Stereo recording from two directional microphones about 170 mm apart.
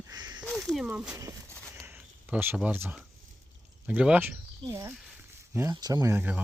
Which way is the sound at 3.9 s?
10° right (ahead or behind).